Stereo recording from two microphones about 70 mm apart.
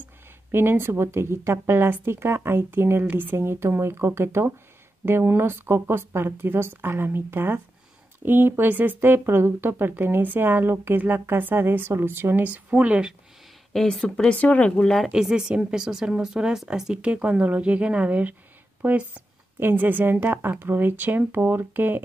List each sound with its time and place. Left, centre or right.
0.0 s speech: right; by 13.1 s centre
13.7 s speech: centre
15.0 s a woman's voice: centre; by 22.0 s right